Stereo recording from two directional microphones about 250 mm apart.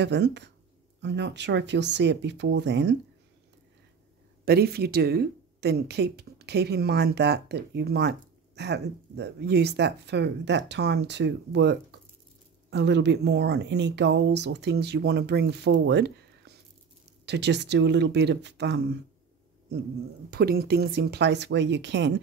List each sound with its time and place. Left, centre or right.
0.0 s speech: right
4.5 s speech: right
20.2 s speech: right